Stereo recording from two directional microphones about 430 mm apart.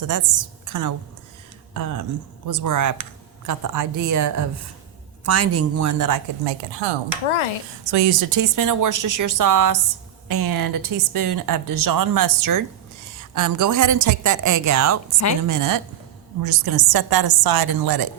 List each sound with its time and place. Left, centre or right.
0.0 s a woman's voice: right
7.9 s a woman's voice: right